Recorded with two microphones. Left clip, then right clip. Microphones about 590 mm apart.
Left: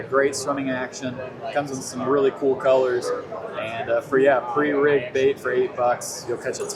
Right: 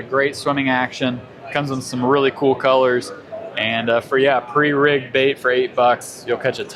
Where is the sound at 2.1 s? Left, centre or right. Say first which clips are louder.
Right 3 dB; right.